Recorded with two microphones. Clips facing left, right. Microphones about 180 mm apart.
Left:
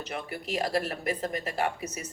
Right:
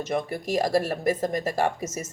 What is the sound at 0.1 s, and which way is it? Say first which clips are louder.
Speech: right 7 dB; 40° right (ahead or behind).